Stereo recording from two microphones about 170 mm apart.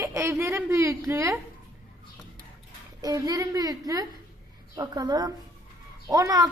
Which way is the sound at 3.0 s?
20° right (ahead or behind).